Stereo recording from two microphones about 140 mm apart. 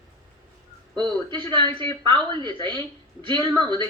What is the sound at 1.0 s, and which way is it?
Speech, 35° right (ahead or behind).